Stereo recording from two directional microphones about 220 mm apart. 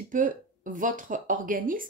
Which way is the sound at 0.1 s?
35° right (ahead or behind).